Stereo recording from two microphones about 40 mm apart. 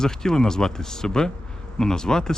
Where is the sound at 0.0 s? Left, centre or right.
Centre.